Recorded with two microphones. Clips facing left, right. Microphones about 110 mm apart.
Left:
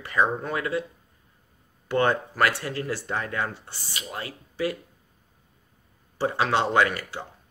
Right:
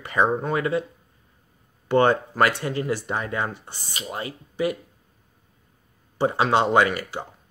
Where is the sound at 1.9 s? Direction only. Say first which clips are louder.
Right 4 dB; 25° right (ahead or behind).